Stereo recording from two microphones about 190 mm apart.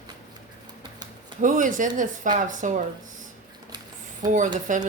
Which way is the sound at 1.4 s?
45° right (ahead or behind).